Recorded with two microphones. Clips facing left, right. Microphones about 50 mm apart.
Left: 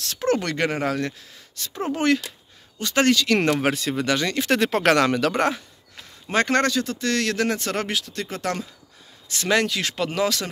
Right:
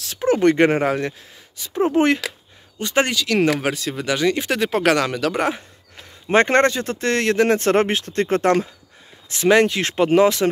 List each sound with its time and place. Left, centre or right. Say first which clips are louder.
0.0 s speech: right 3 dB; centre
0.4 s speech: right 9 dB; right
3.2 s speech: right 2 dB; centre
5.5 s a sound: right 2 dB; centre
6.3 s speech: right 5 dB; right
9.3 s speech: right 6 dB; right